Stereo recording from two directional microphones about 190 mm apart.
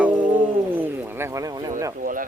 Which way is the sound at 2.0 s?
45° right (ahead or behind).